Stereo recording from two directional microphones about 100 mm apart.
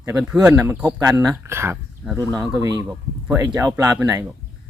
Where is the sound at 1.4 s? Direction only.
25° right (ahead or behind).